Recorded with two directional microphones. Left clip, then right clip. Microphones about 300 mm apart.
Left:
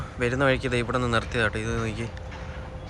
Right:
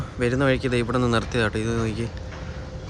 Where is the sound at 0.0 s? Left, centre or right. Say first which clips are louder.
Right 1 dB; centre.